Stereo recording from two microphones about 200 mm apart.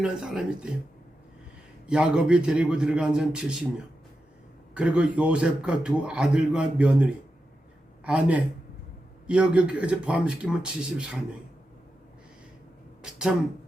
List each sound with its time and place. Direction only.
0.0 s a man's voice: 5° right (ahead or behind)
1.9 s a man's voice: 5° right (ahead or behind)
4.7 s a man's voice: 5° right (ahead or behind)
13.0 s speech: 5° right (ahead or behind)